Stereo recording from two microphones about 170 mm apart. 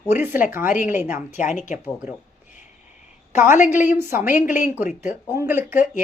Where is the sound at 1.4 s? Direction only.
45° left (ahead or behind).